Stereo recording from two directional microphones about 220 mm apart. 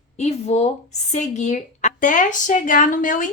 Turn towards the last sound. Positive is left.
turn(degrees=35)  # may be behind; listen again after turning